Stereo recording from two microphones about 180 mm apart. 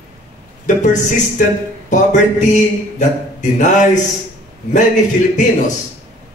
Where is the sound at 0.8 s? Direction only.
45° left (ahead or behind).